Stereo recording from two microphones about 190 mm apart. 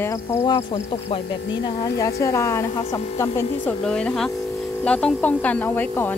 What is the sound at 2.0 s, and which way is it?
Speech, 15° left (ahead or behind).